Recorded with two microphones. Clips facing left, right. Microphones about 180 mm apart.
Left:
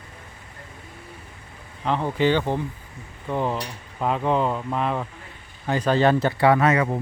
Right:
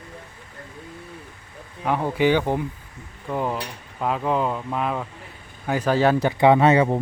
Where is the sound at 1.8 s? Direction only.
10° right (ahead or behind).